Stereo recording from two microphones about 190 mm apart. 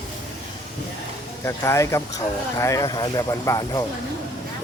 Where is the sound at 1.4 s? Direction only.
15° left (ahead or behind).